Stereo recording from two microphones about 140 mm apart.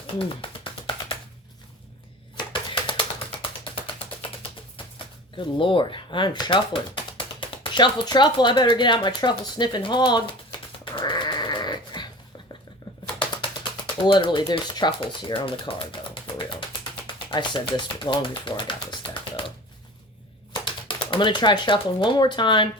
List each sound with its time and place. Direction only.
0.2 s bird: 40° left (ahead or behind)
2.3 s typewriter: 35° left (ahead or behind)
5.5 s speech: 35° left (ahead or behind)
10.9 s sheep: 35° left (ahead or behind)
13.8 s speech: 35° left (ahead or behind)
20.5 s speech: 35° left (ahead or behind)